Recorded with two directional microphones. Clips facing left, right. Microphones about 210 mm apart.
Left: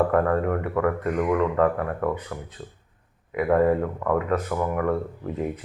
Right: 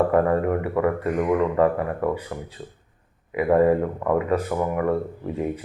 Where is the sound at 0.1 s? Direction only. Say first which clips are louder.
Right 2 dB; 10° right (ahead or behind).